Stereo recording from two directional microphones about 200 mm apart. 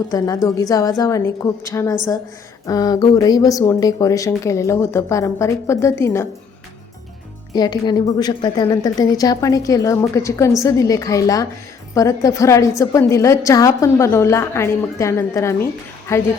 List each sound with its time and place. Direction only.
0.1 s a woman's voice: 15° left (ahead or behind)
7.5 s a woman's voice: 20° left (ahead or behind)